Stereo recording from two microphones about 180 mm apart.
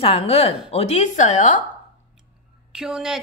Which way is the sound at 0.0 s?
35° left (ahead or behind).